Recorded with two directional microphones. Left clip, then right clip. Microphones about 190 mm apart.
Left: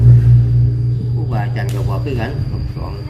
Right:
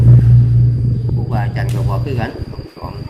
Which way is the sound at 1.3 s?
Centre (ahead or behind).